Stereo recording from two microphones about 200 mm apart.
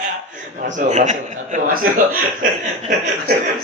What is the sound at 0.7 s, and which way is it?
A man's voice, 40° right (ahead or behind).